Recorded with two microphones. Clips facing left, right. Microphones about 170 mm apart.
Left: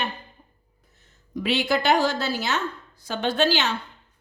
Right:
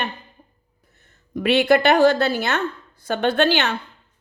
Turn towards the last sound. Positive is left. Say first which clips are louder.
# right 4 dB
turn(degrees=-60)  # may be behind; listen again after turning